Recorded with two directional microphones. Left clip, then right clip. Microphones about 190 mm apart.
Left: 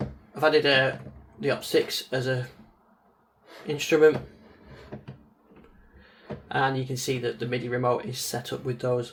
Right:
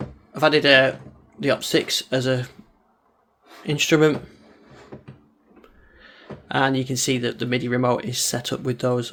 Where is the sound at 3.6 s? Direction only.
55° right (ahead or behind).